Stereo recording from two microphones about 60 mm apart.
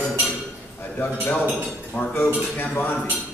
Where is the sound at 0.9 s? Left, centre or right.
Left.